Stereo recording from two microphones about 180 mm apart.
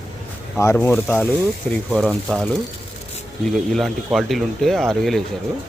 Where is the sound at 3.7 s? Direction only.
Centre (ahead or behind).